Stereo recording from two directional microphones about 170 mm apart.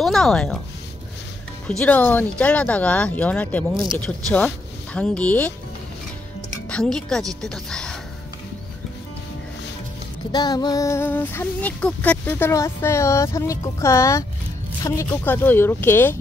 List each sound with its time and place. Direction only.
0.0 s speech: 5° left (ahead or behind)
1.7 s speech: 5° left (ahead or behind)
6.7 s speech: 5° left (ahead or behind)
10.3 s speech: 25° left (ahead or behind)